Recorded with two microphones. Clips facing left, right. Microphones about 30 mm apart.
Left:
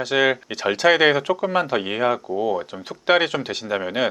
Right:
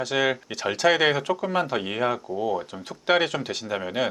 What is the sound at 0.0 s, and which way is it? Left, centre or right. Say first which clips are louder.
Speech: left 5 dB; centre.